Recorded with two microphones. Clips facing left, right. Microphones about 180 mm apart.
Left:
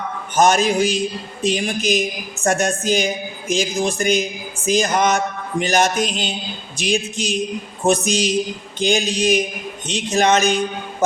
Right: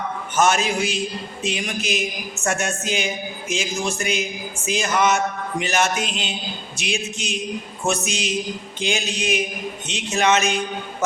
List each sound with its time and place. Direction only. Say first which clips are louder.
0.3 s a man's voice: left 4 dB; 35° left (ahead or behind)